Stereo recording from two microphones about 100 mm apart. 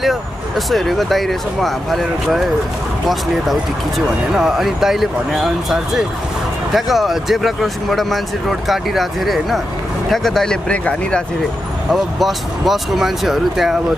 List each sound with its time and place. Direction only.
0.0 s speech: centre (ahead or behind)
4.3 s speech: 5° right (ahead or behind); by 11.2 s 10° left (ahead or behind)
11.9 s speech: centre (ahead or behind)